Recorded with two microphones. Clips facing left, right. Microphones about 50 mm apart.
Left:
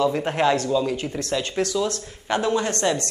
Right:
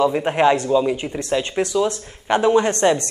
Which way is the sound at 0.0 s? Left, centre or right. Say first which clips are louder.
Right 4 dB; centre.